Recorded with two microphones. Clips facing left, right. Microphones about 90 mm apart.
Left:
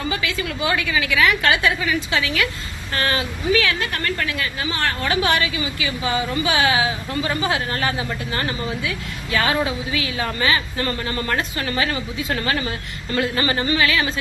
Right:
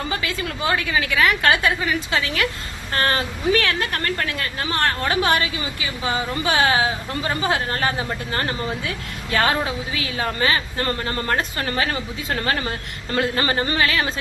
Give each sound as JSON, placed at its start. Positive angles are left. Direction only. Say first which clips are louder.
{"t": 0.1, "sound": "a woman's voice", "louder": "left 1 dB", "side_deg": -40}
{"t": 6.4, "sound": "a woman's voice", "louder": "right 1 dB", "side_deg": -45}